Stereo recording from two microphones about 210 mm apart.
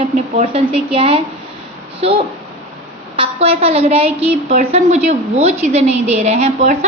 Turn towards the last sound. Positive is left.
turn(degrees=-30)  # may be behind; listen again after turning